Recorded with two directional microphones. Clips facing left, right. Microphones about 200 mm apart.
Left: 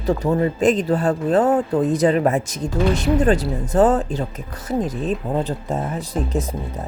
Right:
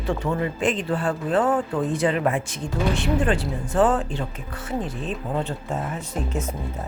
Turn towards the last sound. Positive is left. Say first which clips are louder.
# left 4 dB
turn(degrees=35)  # may be behind; listen again after turning